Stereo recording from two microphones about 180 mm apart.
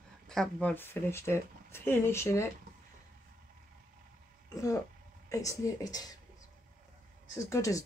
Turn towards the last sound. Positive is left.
turn(degrees=15)  # may be behind; listen again after turning